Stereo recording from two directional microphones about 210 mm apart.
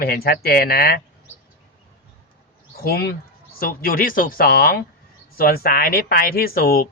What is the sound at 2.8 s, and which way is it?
Speech, 45° left (ahead or behind).